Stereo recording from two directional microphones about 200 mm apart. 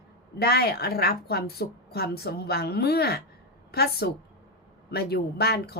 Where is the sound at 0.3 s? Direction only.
50° left (ahead or behind).